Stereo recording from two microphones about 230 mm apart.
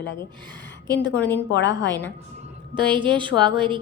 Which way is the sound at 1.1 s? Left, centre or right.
Centre.